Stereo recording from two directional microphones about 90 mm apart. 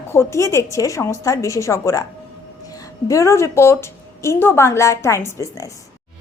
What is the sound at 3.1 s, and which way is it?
Speech, 35° left (ahead or behind).